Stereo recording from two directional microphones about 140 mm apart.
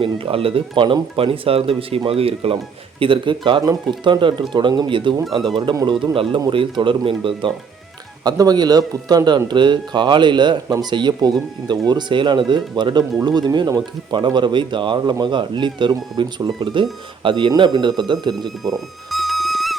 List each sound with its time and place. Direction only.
0.0 s a man's voice: 40° right (ahead or behind)
18.3 s music: centre (ahead or behind)